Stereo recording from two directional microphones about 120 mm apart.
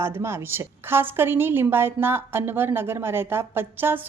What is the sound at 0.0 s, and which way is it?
A woman's voice, 20° right (ahead or behind).